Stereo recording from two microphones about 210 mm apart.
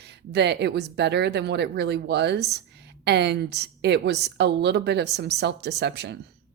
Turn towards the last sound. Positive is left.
turn(degrees=-55)  # may be behind; listen again after turning